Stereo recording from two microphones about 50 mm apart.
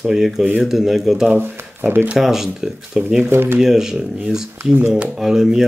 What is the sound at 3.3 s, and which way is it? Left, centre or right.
Speech, right.